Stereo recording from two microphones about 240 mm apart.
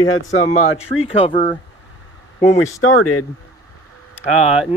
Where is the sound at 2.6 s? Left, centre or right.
Left.